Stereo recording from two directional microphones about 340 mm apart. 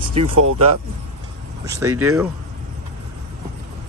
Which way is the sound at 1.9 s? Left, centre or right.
Right.